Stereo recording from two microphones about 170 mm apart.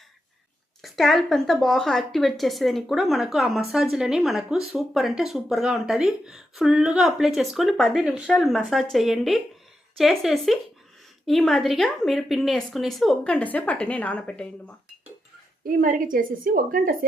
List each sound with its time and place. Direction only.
0.8 s speech: centre (ahead or behind)
15.6 s a woman's voice: 55° right (ahead or behind)